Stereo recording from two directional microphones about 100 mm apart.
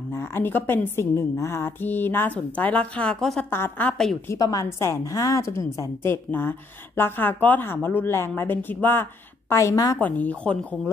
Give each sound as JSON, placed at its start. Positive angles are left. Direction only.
{"t": 0.1, "sound": "a woman's voice", "side_deg": 25}
{"t": 3.4, "sound": "a woman's voice", "side_deg": 25}
{"t": 4.4, "sound": "a woman's voice", "side_deg": 35}
{"t": 9.9, "sound": "speech", "side_deg": 15}